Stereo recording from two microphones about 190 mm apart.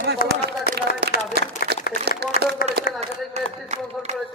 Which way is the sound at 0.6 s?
55° right (ahead or behind).